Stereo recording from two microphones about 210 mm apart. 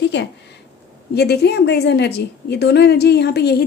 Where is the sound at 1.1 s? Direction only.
50° left (ahead or behind).